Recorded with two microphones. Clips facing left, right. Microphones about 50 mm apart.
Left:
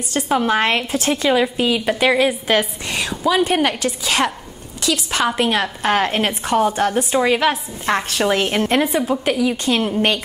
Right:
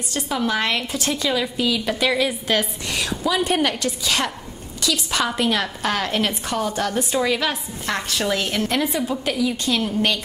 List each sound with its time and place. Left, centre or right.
0.1 s a woman's voice: left
8.8 s a woman's voice: centre